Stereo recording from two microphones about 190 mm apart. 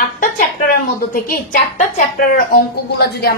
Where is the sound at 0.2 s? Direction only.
50° left (ahead or behind).